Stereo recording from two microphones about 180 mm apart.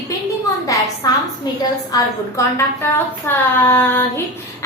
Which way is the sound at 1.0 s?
20° left (ahead or behind).